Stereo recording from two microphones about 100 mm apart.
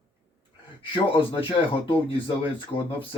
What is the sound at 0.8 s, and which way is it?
Speech, 60° left (ahead or behind).